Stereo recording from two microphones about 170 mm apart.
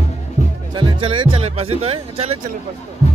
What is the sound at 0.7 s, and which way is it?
Speech, 30° right (ahead or behind).